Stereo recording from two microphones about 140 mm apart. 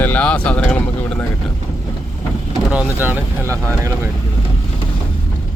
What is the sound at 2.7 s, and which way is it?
Speech, 10° right (ahead or behind).